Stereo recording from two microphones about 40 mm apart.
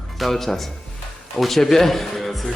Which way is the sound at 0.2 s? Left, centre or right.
Centre.